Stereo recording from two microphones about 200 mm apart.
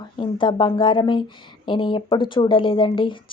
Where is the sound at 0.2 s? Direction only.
25° left (ahead or behind).